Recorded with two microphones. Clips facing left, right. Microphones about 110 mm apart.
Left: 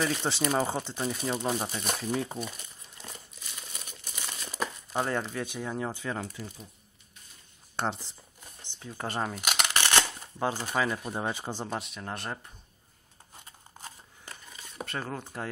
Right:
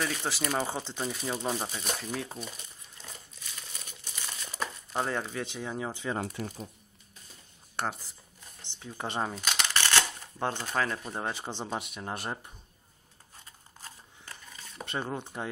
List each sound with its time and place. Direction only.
0.0 s speech: centre (ahead or behind)
4.0 s crumpling: 10° left (ahead or behind)
5.4 s speech: 10° left (ahead or behind)
5.7 s speech: 5° right (ahead or behind)
6.2 s speech: 50° right (ahead or behind)
7.7 s a sound: 20° left (ahead or behind)
8.7 s speech: centre (ahead or behind)
9.3 s a sound: 15° left (ahead or behind)
10.4 s speech: 10° left (ahead or behind)
11.6 s speech: 5° right (ahead or behind)
12.0 s speech: 15° right (ahead or behind)
15.0 s speech: 20° right (ahead or behind)